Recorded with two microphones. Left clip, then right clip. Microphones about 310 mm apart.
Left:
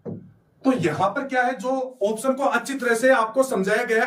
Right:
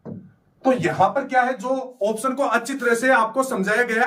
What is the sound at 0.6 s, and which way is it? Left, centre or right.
Speech, centre.